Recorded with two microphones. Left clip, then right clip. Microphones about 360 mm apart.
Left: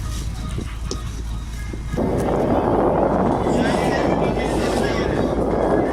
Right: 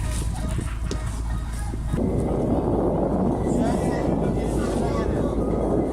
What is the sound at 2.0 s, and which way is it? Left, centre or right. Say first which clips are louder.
Vehicle: left 6 dB; left.